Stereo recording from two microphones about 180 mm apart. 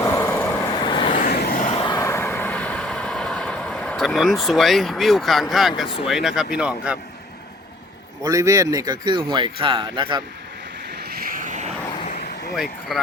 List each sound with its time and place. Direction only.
0.0 s vehicle: 15° left (ahead or behind)
0.8 s vehicle: 25° left (ahead or behind)
1.3 s vehicle: 60° left (ahead or behind)
1.6 s vehicle: 30° left (ahead or behind); by 5.9 s centre (ahead or behind)
6.1 s speech: centre (ahead or behind)
8.2 s speech: 20° right (ahead or behind)
10.9 s vehicle: 60° right (ahead or behind); by 11.7 s 45° right (ahead or behind)
11.9 s vehicle: 40° left (ahead or behind)
12.9 s speech: centre (ahead or behind)